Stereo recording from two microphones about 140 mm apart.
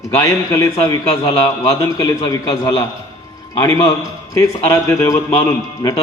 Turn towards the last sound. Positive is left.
turn(degrees=20)  # may be behind; listen again after turning